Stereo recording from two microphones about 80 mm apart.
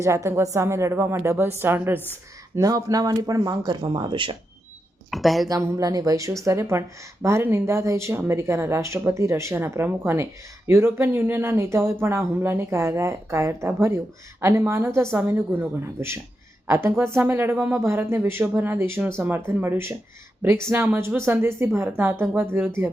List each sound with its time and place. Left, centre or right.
0.0 s speech: right
2.6 s speech: right
5.1 s a woman's voice: centre
5.5 s speech: right